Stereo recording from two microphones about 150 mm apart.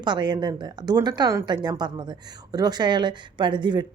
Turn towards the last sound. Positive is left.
turn(degrees=-30)  # may be behind; listen again after turning